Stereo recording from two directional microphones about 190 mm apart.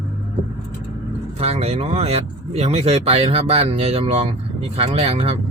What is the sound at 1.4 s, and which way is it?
Speech, 30° right (ahead or behind).